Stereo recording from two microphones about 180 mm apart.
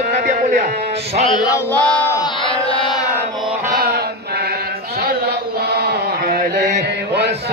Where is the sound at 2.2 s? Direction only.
30° left (ahead or behind).